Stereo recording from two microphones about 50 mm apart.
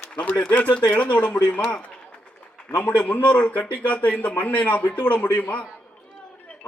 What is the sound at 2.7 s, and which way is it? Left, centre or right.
A man's voice, left.